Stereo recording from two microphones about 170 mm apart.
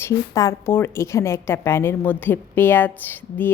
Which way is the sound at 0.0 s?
20° left (ahead or behind).